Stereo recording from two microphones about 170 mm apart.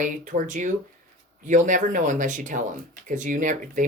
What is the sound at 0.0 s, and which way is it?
Speech, 50° right (ahead or behind).